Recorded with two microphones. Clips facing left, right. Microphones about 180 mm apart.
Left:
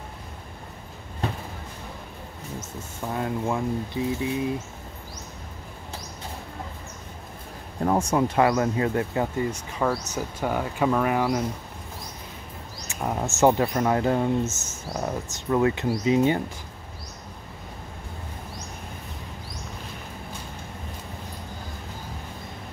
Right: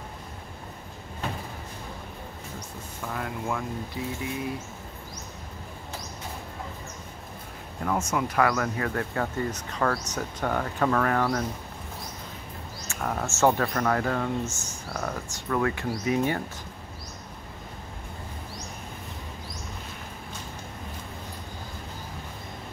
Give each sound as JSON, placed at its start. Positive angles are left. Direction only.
{"t": 3.1, "sound": "speech", "side_deg": 25}
{"t": 7.8, "sound": "speech", "side_deg": 30}
{"t": 12.8, "sound": "speech", "side_deg": 15}